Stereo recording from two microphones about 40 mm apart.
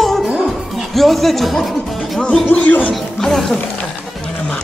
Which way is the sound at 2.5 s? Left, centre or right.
Left.